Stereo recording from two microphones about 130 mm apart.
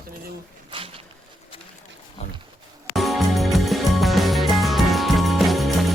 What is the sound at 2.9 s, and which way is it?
Music, centre (ahead or behind).